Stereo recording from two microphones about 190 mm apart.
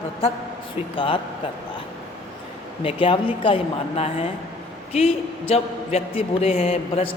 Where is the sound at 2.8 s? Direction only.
30° left (ahead or behind).